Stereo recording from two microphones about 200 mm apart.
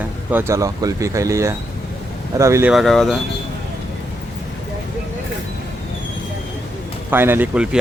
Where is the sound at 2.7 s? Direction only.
Centre (ahead or behind).